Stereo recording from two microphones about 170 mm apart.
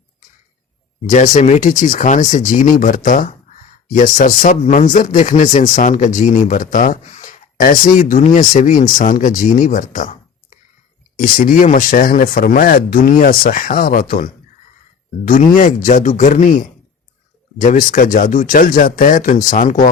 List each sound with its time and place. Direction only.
1.1 s speech: 45° left (ahead or behind)
11.2 s speech: 55° left (ahead or behind)